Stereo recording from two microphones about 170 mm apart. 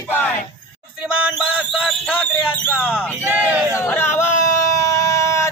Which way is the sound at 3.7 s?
15° left (ahead or behind).